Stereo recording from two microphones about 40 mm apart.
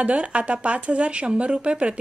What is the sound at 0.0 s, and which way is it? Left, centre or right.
A woman's voice, right.